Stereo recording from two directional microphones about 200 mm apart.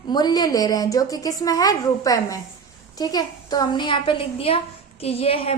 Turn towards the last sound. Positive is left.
turn(degrees=30)  # may be behind; listen again after turning